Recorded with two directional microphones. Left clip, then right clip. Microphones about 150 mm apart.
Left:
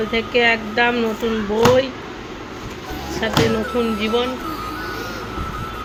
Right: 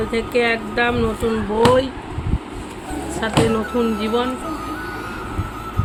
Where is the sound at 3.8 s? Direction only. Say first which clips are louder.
Left 1 dB; 30° right (ahead or behind).